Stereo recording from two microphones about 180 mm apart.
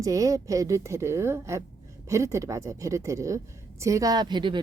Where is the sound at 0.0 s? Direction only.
20° right (ahead or behind).